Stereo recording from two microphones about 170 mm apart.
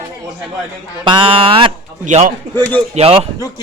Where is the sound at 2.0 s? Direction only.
45° right (ahead or behind).